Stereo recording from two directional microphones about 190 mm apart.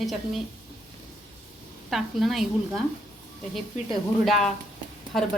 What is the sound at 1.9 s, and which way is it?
Speech, centre (ahead or behind).